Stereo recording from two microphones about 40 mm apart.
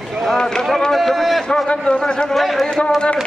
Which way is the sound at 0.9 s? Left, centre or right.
Centre.